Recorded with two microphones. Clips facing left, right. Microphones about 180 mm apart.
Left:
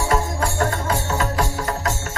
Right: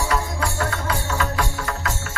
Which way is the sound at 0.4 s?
45° left (ahead or behind).